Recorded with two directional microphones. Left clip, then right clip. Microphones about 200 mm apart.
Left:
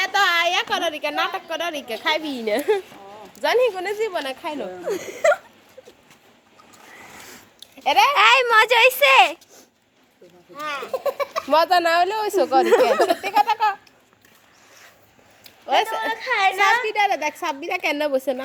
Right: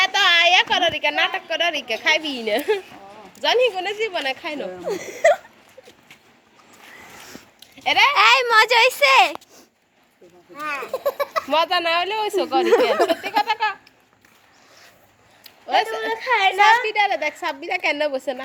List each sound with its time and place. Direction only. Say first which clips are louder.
0.0 s a woman's voice: right 3 dB; 30° left (ahead or behind)
4.9 s a child's voice: right 2 dB; 5° left (ahead or behind)
7.9 s speech: even; 40° left (ahead or behind)
8.1 s a child's voice: even; centre (ahead or behind)
10.5 s a child's voice: even; 10° right (ahead or behind)
11.4 s speech: left 4 dB; 40° left (ahead or behind)
15.6 s speech: even; 35° left (ahead or behind)
16.1 s a child's voice: right 3 dB; 25° right (ahead or behind)
16.8 s a woman's voice: even; 45° left (ahead or behind)